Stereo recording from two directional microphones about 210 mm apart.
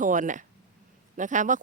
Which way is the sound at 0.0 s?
40° right (ahead or behind).